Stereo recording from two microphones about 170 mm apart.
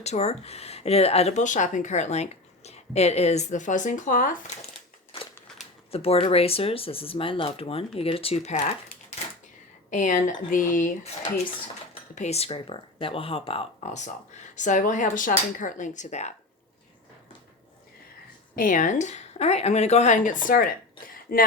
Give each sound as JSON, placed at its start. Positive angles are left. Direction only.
{"t": 0.0, "sound": "speech", "side_deg": 40}
{"t": 5.9, "sound": "speech", "side_deg": 35}
{"t": 18.5, "sound": "speech", "side_deg": 50}